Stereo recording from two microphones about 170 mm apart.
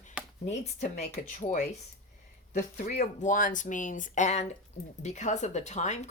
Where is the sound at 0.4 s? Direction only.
40° left (ahead or behind).